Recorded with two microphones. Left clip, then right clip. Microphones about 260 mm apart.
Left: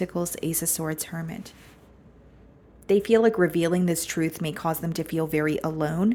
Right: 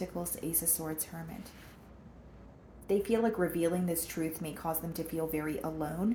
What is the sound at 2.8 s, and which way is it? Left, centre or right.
Speech, left.